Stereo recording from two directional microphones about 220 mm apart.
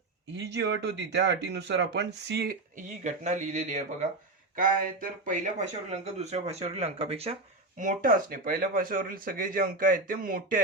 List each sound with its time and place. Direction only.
0.3 s speech: 50° right (ahead or behind)